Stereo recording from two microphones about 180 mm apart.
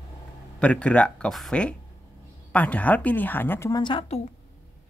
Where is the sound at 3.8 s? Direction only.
25° left (ahead or behind).